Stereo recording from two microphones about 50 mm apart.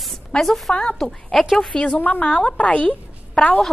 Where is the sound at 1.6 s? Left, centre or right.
Centre.